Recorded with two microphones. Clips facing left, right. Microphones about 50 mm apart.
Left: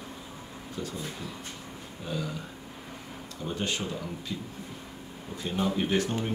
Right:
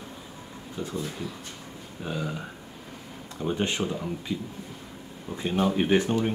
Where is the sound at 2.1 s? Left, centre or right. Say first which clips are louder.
Right 2 dB; right.